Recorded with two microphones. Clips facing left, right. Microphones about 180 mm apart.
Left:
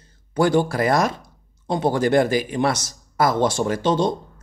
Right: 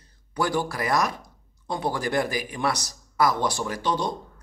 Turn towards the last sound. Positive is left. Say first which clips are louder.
# left 7 dB
turn(degrees=25)  # may be behind; listen again after turning